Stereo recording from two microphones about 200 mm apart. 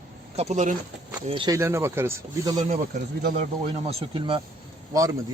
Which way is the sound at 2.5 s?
40° right (ahead or behind).